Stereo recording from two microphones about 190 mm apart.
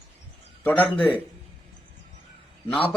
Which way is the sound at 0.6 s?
10° left (ahead or behind).